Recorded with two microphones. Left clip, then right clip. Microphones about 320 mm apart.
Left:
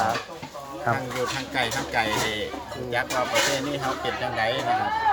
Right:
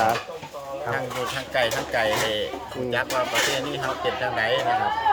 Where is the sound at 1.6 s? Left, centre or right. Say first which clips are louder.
Right 3 dB; centre.